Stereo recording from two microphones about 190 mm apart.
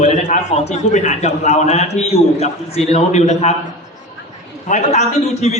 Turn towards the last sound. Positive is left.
turn(degrees=35)  # may be behind; listen again after turning